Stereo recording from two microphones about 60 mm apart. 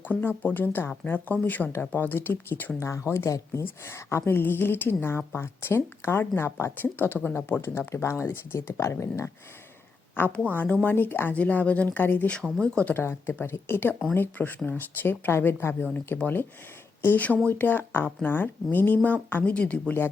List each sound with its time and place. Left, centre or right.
0.0 s speech: left
2.7 s speech: left
6.7 s speech: left
10.2 s speech: left
11.3 s speech: left
12.5 s a woman's voice: centre
12.9 s speech: left